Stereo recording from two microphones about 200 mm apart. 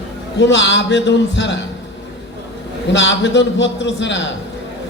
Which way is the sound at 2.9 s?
65° left (ahead or behind).